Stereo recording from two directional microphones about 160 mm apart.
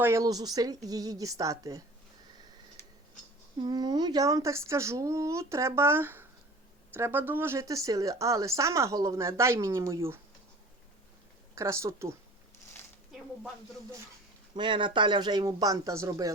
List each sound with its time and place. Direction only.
0.0 s a woman's voice: 20° right (ahead or behind)
3.6 s a woman's voice: 25° right (ahead or behind)
11.5 s speech: 15° right (ahead or behind)
14.5 s a woman's voice: 30° right (ahead or behind)